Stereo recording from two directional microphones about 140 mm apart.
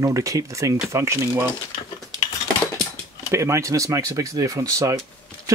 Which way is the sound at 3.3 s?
20° right (ahead or behind).